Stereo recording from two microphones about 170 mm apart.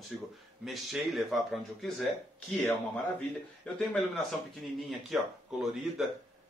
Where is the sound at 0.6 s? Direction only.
Centre (ahead or behind).